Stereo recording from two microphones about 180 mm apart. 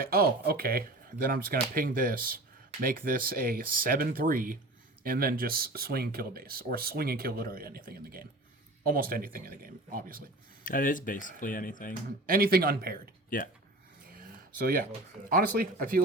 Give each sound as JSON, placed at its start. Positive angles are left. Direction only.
{"t": 0.0, "sound": "speech", "side_deg": -55}
{"t": 10.6, "sound": "speech", "side_deg": 50}
{"t": 12.2, "sound": "speech", "side_deg": -55}
{"t": 13.3, "sound": "speech", "side_deg": 50}
{"t": 14.2, "sound": "a sound", "side_deg": -55}
{"t": 15.5, "sound": "speech", "side_deg": -50}